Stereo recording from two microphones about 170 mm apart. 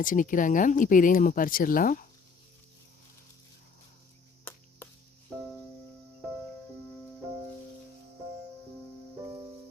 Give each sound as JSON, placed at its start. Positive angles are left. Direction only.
{"t": 0.0, "sound": "speech", "side_deg": 50}